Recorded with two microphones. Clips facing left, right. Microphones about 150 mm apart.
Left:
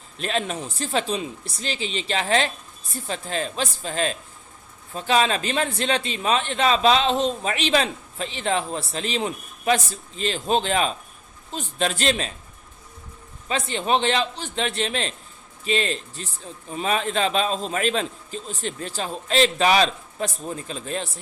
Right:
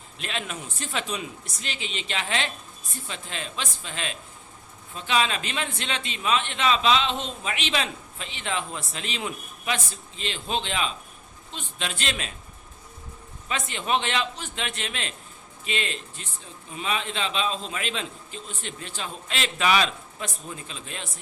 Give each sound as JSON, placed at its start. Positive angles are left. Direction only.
{"t": 0.2, "sound": "speech", "side_deg": 40}
{"t": 13.5, "sound": "speech", "side_deg": 35}